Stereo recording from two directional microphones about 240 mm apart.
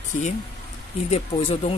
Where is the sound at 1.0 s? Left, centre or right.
Left.